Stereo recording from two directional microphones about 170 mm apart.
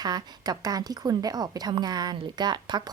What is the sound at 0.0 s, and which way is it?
A woman's voice, 25° right (ahead or behind).